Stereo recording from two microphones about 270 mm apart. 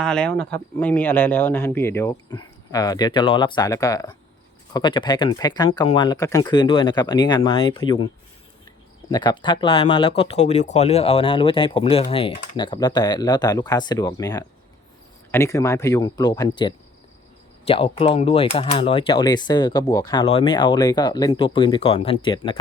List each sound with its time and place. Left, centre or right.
0.0 s speech: centre
9.0 s speech: centre